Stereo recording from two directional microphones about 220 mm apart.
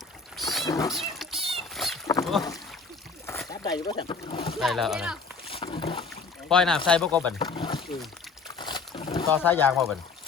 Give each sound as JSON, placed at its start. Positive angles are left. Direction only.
{"t": 0.3, "sound": "boat", "side_deg": 0}
{"t": 0.6, "sound": "speech", "side_deg": 15}
{"t": 0.9, "sound": "cat", "side_deg": 0}
{"t": 2.3, "sound": "speech", "side_deg": 0}
{"t": 3.2, "sound": "speech", "side_deg": 15}
{"t": 4.5, "sound": "speech", "side_deg": 0}
{"t": 5.5, "sound": "boat", "side_deg": 25}
{"t": 6.5, "sound": "speech", "side_deg": 0}
{"t": 7.3, "sound": "a sound", "side_deg": 25}
{"t": 8.4, "sound": "boat", "side_deg": 20}
{"t": 9.3, "sound": "speech", "side_deg": 10}